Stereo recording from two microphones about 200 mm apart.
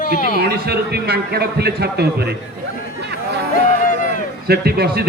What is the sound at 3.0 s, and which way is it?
Chatter, 55° right (ahead or behind).